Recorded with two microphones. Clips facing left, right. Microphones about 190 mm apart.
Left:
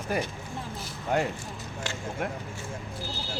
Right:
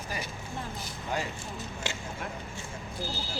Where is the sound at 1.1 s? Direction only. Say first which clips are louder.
Left 7 dB; 60° left (ahead or behind).